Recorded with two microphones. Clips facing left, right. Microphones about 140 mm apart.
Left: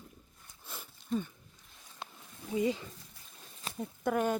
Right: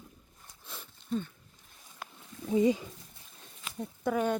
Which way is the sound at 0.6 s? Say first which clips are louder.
Even; 5° left (ahead or behind).